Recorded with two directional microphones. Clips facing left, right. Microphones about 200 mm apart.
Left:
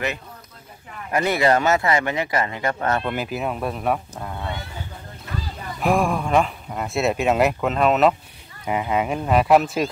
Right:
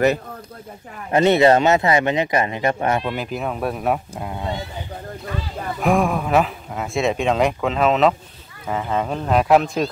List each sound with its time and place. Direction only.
1.1 s speech: 25° right (ahead or behind)
3.1 s speech: 5° left (ahead or behind); by 4.6 s 15° right (ahead or behind)
5.8 s speech: centre (ahead or behind)
8.6 s speech: 10° left (ahead or behind)